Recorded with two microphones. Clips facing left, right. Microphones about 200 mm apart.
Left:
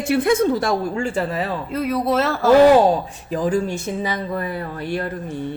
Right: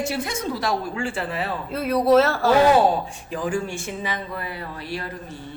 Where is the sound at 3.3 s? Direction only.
40° left (ahead or behind).